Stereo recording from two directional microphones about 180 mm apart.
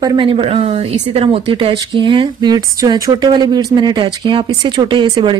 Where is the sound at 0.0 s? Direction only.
25° right (ahead or behind).